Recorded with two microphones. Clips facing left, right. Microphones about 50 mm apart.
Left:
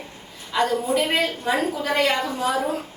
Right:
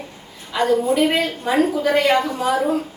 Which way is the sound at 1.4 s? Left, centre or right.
Centre.